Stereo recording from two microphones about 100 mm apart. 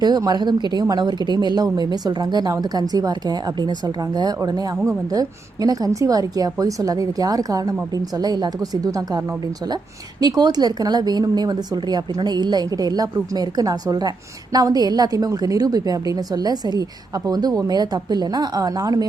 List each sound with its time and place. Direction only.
0.0 s a woman's voice: 40° right (ahead or behind)